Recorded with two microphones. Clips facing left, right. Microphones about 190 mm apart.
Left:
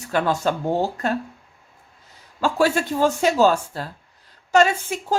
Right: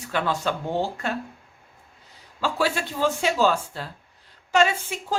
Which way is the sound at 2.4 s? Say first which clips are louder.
Left 5 dB; 45° left (ahead or behind).